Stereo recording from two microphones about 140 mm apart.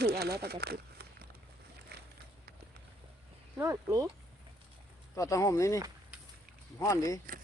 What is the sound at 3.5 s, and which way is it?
Speech, 20° right (ahead or behind).